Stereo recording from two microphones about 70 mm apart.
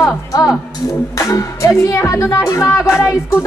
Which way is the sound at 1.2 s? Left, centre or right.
Left.